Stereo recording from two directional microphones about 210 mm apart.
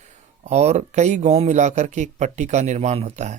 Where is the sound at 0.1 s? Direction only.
35° right (ahead or behind).